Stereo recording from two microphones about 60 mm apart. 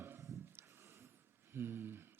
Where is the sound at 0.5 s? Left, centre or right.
Right.